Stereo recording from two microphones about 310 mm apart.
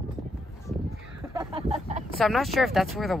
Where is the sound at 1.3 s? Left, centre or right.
Centre.